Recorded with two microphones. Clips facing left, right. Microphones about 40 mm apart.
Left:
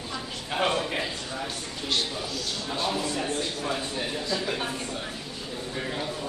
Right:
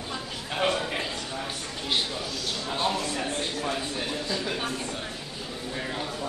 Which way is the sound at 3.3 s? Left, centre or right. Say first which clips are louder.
Even; centre.